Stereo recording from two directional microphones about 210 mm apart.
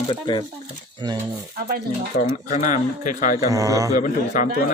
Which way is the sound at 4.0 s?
40° left (ahead or behind).